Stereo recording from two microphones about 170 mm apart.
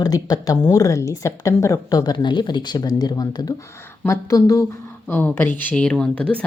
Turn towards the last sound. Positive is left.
turn(degrees=5)  # may be behind; listen again after turning